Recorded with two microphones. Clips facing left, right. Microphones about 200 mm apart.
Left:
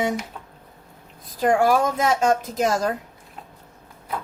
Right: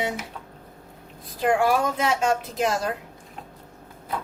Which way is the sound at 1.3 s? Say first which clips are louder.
Left 3 dB; 40° left (ahead or behind).